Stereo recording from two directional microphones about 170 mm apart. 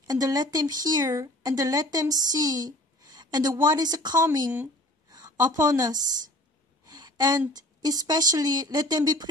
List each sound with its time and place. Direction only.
0.0 s a woman's voice: 20° right (ahead or behind)